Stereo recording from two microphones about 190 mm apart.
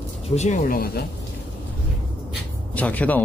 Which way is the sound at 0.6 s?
50° left (ahead or behind).